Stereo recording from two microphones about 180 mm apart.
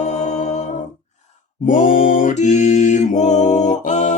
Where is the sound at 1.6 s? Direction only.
45° left (ahead or behind).